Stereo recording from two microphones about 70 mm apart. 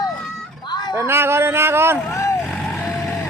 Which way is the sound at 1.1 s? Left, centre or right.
Right.